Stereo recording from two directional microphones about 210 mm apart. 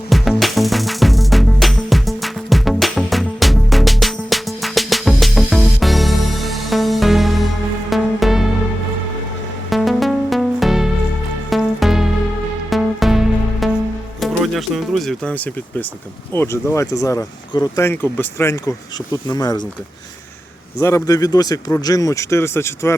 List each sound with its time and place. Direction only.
0.1 s music: centre (ahead or behind)
9.6 s music: centre (ahead or behind)
16.3 s speech: 10° left (ahead or behind)
20.7 s speech: 15° left (ahead or behind)